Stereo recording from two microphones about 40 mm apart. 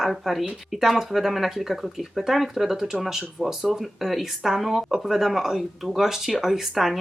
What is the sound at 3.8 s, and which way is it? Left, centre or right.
Speech, centre.